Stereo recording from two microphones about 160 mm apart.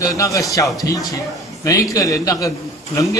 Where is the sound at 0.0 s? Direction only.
20° left (ahead or behind).